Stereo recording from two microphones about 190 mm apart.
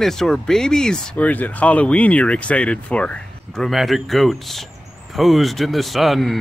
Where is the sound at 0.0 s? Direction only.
Centre (ahead or behind).